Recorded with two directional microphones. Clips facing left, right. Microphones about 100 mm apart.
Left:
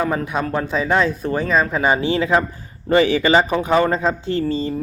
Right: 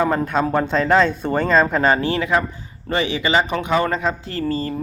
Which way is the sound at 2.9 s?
40° left (ahead or behind).